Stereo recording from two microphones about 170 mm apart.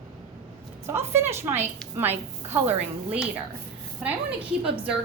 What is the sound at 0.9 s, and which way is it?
A woman's voice, 15° right (ahead or behind).